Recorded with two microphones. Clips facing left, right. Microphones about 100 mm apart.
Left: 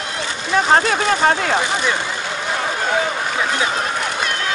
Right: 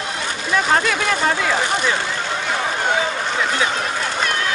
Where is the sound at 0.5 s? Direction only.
35° left (ahead or behind).